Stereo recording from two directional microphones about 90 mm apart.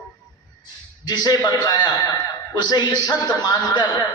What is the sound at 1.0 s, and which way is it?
A man's voice, 50° left (ahead or behind).